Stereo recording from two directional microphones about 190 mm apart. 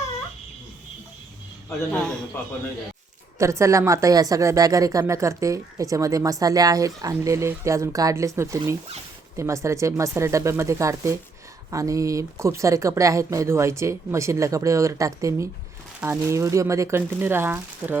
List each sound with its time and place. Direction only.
1.9 s a man's voice: 5° left (ahead or behind)
3.3 s a woman's voice: 15° right (ahead or behind)